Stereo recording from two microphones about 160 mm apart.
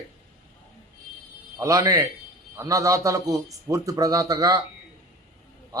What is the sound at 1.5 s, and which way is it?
A man's voice, 20° right (ahead or behind).